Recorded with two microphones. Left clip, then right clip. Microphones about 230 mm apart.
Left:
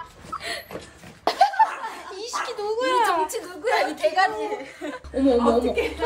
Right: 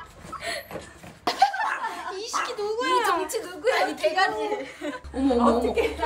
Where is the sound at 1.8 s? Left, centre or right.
Centre.